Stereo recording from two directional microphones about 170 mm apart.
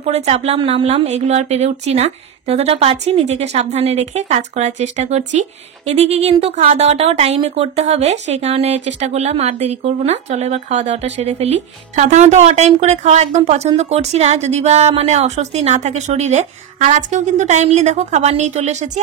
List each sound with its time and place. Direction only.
0.0 s speech: 40° right (ahead or behind)